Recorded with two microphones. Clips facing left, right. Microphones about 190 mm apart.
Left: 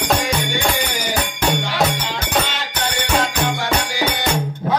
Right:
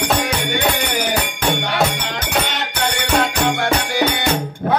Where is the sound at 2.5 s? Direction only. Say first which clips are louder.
Right 2 dB; 55° right (ahead or behind).